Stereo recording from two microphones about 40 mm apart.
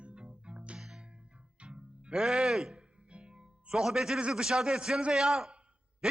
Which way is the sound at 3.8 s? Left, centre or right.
Centre.